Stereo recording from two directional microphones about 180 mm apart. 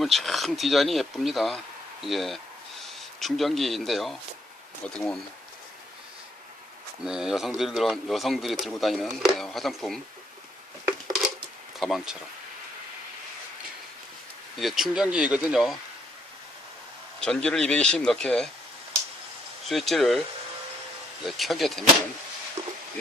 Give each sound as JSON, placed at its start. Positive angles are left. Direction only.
{"t": 0.0, "sound": "speech", "side_deg": 0}
{"t": 7.0, "sound": "speech", "side_deg": -5}
{"t": 11.8, "sound": "speech", "side_deg": 0}
{"t": 14.6, "sound": "speech", "side_deg": 0}
{"t": 17.2, "sound": "speech", "side_deg": 5}
{"t": 19.6, "sound": "speech", "side_deg": 0}
{"t": 21.2, "sound": "speech", "side_deg": 0}